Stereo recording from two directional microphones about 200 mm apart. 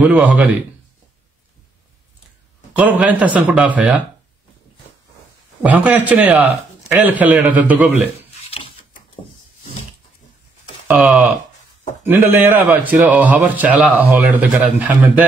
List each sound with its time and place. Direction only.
0.0 s speech: 5° right (ahead or behind)
2.8 s a man's voice: 5° right (ahead or behind)
5.6 s a man's voice: 5° right (ahead or behind)
8.5 s a sound: 25° left (ahead or behind)
10.9 s a man's voice: 5° right (ahead or behind)